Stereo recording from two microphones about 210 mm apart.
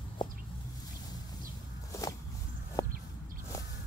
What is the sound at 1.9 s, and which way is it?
Walk, 15° left (ahead or behind).